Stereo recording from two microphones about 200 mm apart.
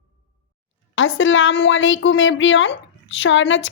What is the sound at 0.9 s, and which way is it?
A woman's voice, 75° left (ahead or behind).